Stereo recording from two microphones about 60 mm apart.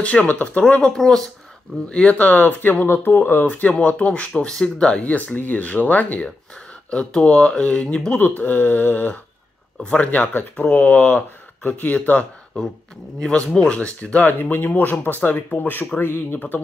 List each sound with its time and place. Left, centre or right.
0.0 s speech: left
0.9 s speech: centre; by 12.3 s left
13.7 s speech: centre
14.2 s speech: left
16.3 s speech: left